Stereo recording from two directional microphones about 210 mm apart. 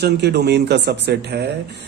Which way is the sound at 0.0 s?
50° right (ahead or behind).